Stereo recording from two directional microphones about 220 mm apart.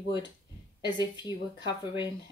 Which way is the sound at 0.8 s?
20° left (ahead or behind).